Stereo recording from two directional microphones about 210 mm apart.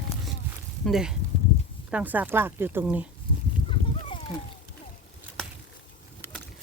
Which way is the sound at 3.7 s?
25° left (ahead or behind).